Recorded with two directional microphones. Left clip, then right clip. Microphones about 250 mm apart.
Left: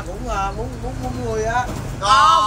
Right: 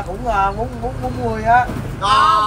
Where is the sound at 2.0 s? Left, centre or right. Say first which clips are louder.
Even; centre.